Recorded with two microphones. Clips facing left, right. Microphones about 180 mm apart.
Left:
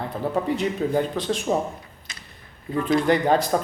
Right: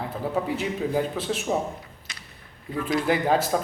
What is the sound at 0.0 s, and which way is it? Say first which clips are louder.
Speech: left 2 dB; 5° right (ahead or behind).